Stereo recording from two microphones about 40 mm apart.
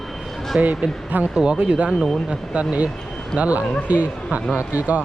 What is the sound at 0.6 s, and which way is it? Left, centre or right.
Speech, right.